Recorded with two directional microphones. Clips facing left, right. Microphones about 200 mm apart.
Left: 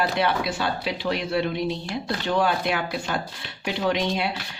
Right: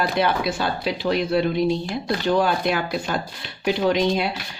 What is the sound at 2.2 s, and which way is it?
Speech, 40° right (ahead or behind).